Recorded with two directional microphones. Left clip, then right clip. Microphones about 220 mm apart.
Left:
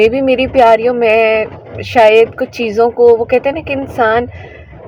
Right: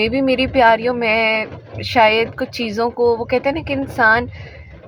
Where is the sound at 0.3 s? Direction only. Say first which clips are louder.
Left 3 dB; 30° left (ahead or behind).